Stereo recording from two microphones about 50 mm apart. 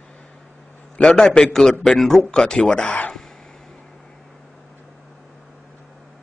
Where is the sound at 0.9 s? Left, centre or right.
Centre.